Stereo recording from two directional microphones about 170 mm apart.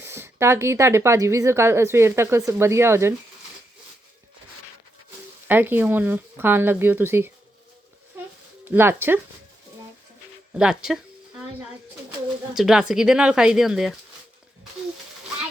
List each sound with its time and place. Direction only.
0.0 s a woman's voice: 15° right (ahead or behind)
5.5 s a woman's voice: 10° right (ahead or behind)
8.6 s a woman's voice: 10° right (ahead or behind)
10.5 s speech: 5° right (ahead or behind)
12.5 s speech: 5° right (ahead or behind)